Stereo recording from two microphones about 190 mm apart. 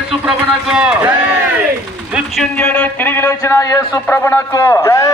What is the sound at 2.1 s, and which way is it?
A man's voice, centre (ahead or behind).